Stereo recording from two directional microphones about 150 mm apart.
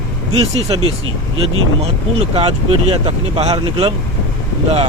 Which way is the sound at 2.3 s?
40° right (ahead or behind).